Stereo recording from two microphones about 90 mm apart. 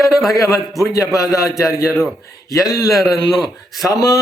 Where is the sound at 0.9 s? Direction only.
40° left (ahead or behind).